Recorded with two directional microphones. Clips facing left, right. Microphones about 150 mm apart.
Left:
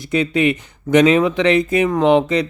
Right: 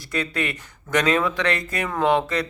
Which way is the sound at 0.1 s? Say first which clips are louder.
Left 10 dB; 20° left (ahead or behind).